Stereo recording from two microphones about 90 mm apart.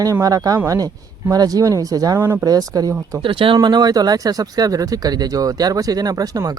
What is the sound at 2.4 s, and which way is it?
Speech, 45° right (ahead or behind).